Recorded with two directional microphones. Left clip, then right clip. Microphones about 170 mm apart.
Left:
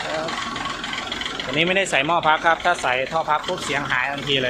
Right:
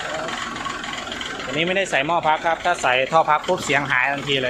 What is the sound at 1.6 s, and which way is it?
Speech, centre (ahead or behind).